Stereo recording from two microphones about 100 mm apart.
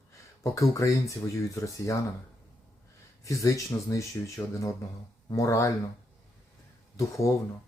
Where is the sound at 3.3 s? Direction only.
35° left (ahead or behind).